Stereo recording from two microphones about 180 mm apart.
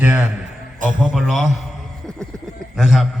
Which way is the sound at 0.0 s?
5° right (ahead or behind).